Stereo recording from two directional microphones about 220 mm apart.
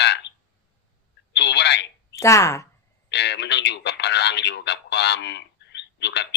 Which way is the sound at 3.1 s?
50° left (ahead or behind).